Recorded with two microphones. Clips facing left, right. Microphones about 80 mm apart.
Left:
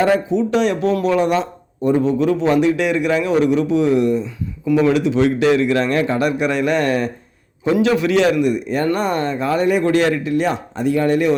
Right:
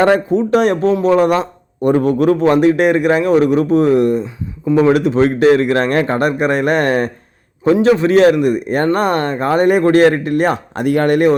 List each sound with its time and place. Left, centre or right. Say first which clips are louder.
0.0 s a man's voice: right 3 dB; right
1.8 s a man's voice: right 3 dB; right
4.6 s speech: right 3 dB; right
4.9 s a man's voice: right 3 dB; right